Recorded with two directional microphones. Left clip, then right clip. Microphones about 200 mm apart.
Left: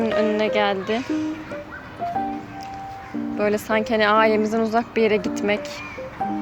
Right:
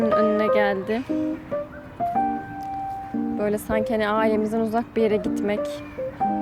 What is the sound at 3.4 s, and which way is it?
A woman's voice, 10° right (ahead or behind).